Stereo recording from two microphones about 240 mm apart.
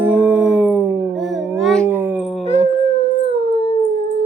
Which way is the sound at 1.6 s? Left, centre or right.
Centre.